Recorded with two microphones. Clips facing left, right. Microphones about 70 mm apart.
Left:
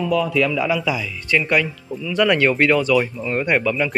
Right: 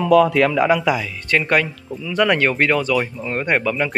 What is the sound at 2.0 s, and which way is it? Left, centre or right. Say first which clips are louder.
Speech: even; right.